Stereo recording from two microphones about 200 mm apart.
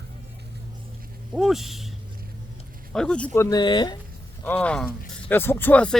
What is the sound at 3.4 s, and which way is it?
Speech, 20° left (ahead or behind).